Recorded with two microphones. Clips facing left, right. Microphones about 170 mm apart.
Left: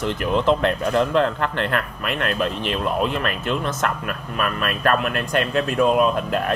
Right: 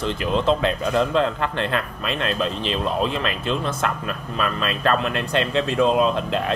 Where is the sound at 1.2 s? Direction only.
20° right (ahead or behind).